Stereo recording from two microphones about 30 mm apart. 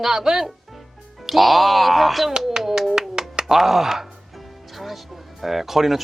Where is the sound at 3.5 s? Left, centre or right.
Centre.